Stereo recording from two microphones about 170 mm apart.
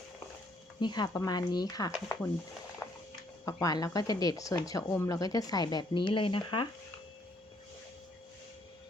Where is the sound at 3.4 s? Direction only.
20° left (ahead or behind).